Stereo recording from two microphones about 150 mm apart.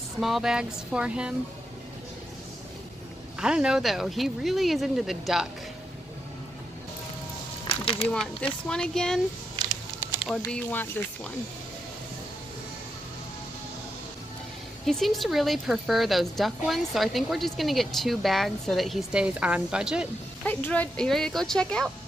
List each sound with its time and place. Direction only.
0.2 s speech: 5° right (ahead or behind)
3.3 s speech: 5° right (ahead or behind)
7.6 s a sound: 40° left (ahead or behind)
8.1 s speech: 5° left (ahead or behind)
9.6 s a sound: 30° right (ahead or behind)
10.5 s speech: 10° left (ahead or behind)
14.9 s speech: centre (ahead or behind)
20.4 s speech: 10° left (ahead or behind)